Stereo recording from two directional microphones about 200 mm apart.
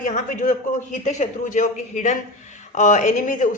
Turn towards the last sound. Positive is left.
turn(degrees=40)  # may be behind; listen again after turning